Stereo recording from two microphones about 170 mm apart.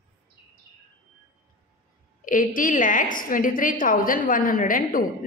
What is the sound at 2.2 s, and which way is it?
A woman's voice, 50° left (ahead or behind).